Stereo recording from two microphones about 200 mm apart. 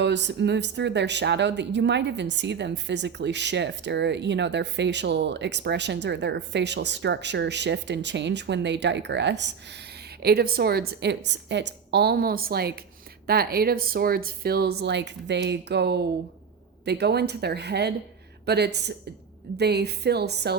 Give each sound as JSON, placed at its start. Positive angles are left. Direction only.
{"t": 0.0, "sound": "speech", "side_deg": -60}